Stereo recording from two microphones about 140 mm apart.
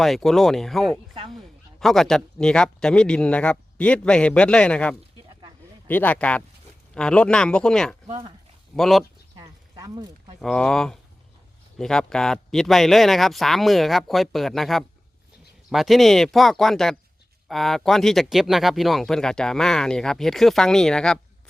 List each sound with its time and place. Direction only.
0.0 s speech: centre (ahead or behind)
8.0 s speech: 40° right (ahead or behind)
8.7 s speech: centre (ahead or behind)
9.3 s a sound: 25° right (ahead or behind)
10.4 s speech: 5° left (ahead or behind)